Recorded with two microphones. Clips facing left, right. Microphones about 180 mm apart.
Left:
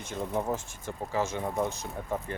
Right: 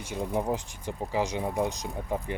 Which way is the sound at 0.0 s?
10° right (ahead or behind).